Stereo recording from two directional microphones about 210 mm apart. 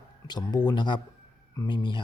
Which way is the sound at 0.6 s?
20° left (ahead or behind).